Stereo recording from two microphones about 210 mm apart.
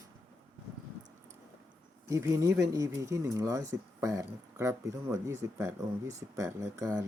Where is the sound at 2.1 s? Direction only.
15° right (ahead or behind).